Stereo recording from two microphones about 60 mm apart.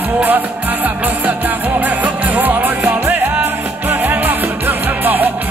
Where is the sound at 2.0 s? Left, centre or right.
Right.